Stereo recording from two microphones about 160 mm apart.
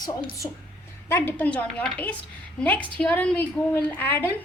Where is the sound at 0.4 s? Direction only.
35° left (ahead or behind).